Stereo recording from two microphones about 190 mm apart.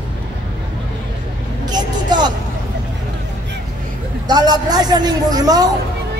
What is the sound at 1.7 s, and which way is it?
Vehicle, 20° right (ahead or behind).